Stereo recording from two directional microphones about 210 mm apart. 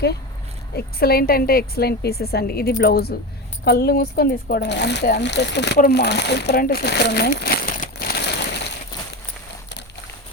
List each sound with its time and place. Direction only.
0.8 s a woman's voice: 45° left (ahead or behind)